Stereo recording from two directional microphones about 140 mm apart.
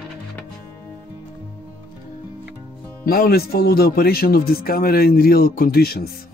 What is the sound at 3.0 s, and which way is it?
Speech, 90° left.